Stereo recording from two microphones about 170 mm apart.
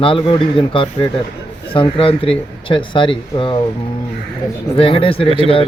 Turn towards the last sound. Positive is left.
turn(degrees=-35)  # may be behind; listen again after turning